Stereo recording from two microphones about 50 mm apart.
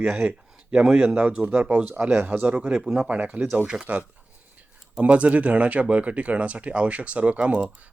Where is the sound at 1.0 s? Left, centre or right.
Right.